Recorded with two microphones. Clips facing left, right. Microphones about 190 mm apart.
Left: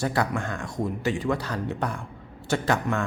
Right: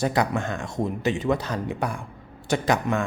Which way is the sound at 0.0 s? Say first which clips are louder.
Right 3 dB; 20° right (ahead or behind).